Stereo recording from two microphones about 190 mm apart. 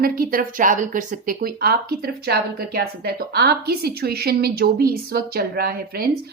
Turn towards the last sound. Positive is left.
turn(degrees=-55)  # may be behind; listen again after turning